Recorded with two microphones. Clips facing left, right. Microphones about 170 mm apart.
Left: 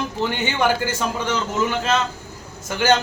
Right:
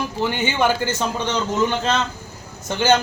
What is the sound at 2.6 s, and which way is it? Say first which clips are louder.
Speech: right 1 dB; 20° right (ahead or behind).